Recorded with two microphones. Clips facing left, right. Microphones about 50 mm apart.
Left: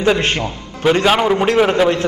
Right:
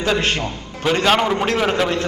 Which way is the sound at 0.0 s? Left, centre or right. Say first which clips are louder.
Left 4 dB; centre.